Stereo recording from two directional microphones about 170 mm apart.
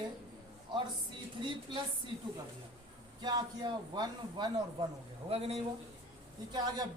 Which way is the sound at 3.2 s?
25° right (ahead or behind).